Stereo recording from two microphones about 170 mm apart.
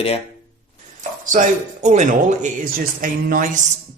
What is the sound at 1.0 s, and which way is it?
Speech, 50° right (ahead or behind).